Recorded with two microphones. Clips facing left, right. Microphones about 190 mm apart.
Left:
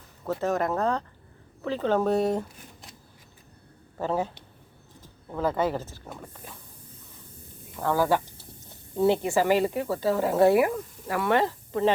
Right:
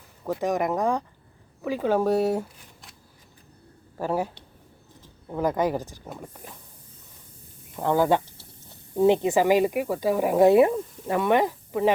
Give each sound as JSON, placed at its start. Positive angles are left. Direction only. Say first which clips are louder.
{"t": 0.3, "sound": "speech", "louder": "right 1 dB", "side_deg": -15}
{"t": 3.9, "sound": "speech", "louder": "right 1 dB", "side_deg": -10}
{"t": 5.3, "sound": "speech", "louder": "right 2 dB", "side_deg": -15}
{"t": 7.8, "sound": "speech", "louder": "right 3 dB", "side_deg": -20}